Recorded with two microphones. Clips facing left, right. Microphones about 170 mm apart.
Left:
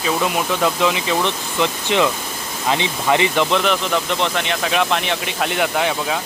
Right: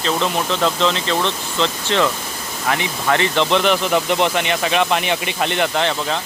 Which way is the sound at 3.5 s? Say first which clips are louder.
Right 2 dB; centre (ahead or behind).